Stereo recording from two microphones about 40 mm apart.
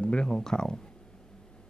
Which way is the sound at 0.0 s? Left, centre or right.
Left.